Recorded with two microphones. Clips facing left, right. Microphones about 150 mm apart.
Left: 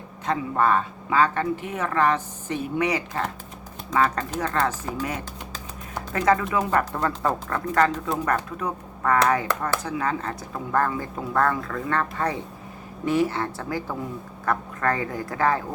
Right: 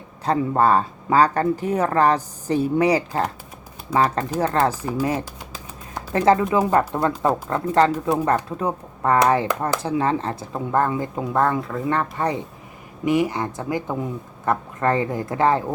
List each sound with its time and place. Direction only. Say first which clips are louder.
0.3 s speech: right 4 dB; 35° right (ahead or behind)
4.7 s speech: right 5 dB; 10° right (ahead or behind)
6.1 s speech: right 5 dB; 30° right (ahead or behind)